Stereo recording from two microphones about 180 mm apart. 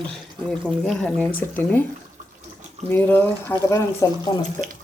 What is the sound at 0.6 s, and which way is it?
Speech, 5° left (ahead or behind).